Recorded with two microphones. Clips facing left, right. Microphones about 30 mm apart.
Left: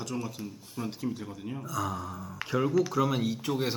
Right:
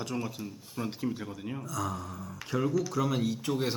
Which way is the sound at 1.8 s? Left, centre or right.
Centre.